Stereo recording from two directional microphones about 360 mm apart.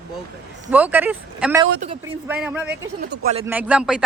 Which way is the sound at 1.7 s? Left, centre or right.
Centre.